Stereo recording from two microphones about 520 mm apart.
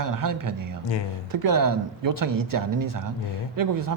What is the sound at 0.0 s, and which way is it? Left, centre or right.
Speech, right.